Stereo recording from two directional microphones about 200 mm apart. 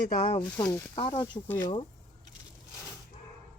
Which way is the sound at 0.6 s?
15° left (ahead or behind).